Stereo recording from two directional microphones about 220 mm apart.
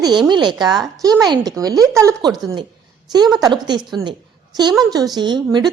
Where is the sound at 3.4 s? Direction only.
20° right (ahead or behind).